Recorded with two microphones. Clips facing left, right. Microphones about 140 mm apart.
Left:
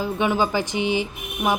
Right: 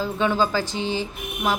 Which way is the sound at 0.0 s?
15° left (ahead or behind).